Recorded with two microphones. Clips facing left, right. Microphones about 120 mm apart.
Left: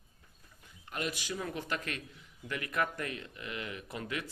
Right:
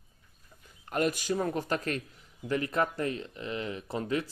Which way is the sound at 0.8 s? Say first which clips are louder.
Right 9 dB; 45° right (ahead or behind).